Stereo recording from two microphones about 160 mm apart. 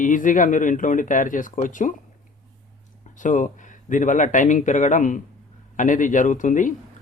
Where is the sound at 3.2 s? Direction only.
50° left (ahead or behind).